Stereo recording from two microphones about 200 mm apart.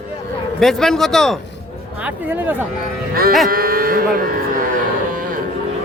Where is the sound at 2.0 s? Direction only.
10° right (ahead or behind).